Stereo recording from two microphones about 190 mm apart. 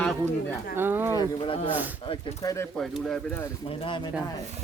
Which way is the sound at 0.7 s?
10° right (ahead or behind).